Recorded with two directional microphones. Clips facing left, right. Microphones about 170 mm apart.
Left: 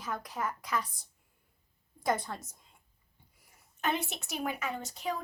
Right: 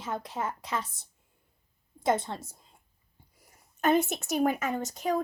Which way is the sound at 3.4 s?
45° right (ahead or behind).